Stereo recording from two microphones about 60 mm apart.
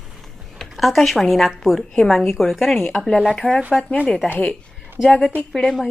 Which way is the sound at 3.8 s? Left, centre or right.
Centre.